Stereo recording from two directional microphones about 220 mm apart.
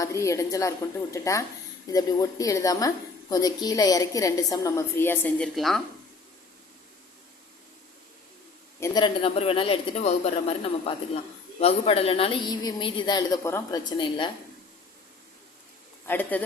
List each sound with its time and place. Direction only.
0.0 s a woman's voice: 15° left (ahead or behind)
8.8 s a woman's voice: 20° left (ahead or behind)
16.0 s a woman's voice: 10° left (ahead or behind)